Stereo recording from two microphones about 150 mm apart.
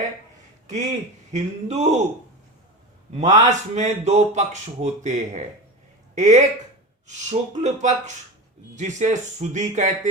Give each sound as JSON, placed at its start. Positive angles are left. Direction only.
{"t": 0.7, "sound": "speech", "side_deg": -50}
{"t": 3.1, "sound": "speech", "side_deg": -50}